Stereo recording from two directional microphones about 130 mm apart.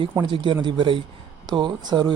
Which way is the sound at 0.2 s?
35° right (ahead or behind).